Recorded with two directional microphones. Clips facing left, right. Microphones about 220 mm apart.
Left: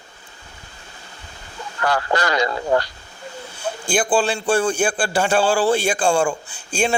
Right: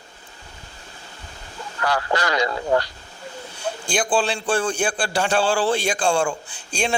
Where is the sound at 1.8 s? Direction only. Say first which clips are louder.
Left 2 dB; 50° left (ahead or behind).